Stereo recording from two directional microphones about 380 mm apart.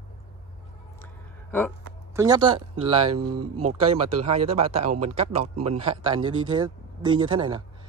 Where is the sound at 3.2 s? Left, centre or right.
Right.